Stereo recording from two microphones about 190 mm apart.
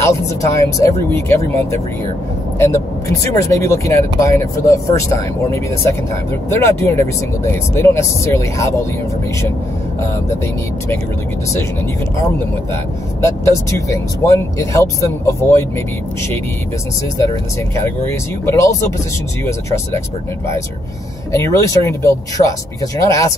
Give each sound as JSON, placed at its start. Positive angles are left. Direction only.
{"t": 0.0, "sound": "speech", "side_deg": 15}
{"t": 3.3, "sound": "speech", "side_deg": 15}
{"t": 13.2, "sound": "speech", "side_deg": 15}
{"t": 18.5, "sound": "speech", "side_deg": 15}
{"t": 21.3, "sound": "speech", "side_deg": 15}